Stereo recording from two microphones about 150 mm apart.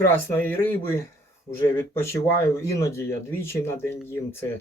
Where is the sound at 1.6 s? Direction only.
15° left (ahead or behind).